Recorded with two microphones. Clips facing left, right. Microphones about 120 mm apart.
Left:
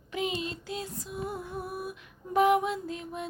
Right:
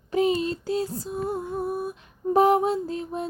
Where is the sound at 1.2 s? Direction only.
25° right (ahead or behind).